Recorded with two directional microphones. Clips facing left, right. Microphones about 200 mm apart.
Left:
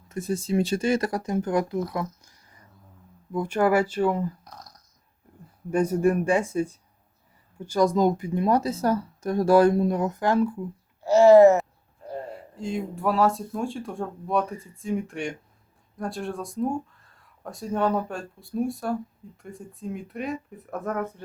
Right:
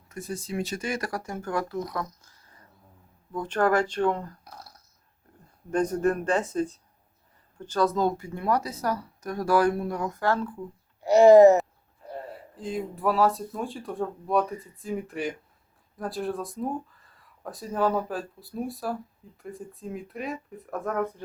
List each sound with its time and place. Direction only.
0.1 s speech: 25° left (ahead or behind)
2.2 s a sound: 15° left (ahead or behind)
3.3 s speech: 10° left (ahead or behind)
4.4 s burping: 10° right (ahead or behind)
5.7 s speech: 10° left (ahead or behind)
11.0 s speech: 15° right (ahead or behind)
12.3 s speech: centre (ahead or behind)